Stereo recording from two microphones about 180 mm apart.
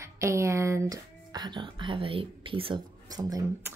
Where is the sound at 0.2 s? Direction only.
15° right (ahead or behind).